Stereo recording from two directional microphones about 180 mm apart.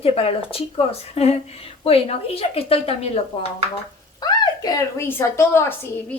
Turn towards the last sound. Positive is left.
turn(degrees=15)  # may be behind; listen again after turning